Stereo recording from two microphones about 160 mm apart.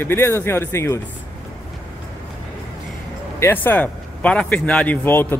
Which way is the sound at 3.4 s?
10° left (ahead or behind).